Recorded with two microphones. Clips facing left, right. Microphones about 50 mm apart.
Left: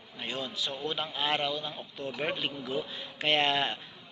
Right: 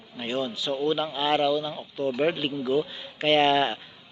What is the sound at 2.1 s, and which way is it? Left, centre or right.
Speech, centre.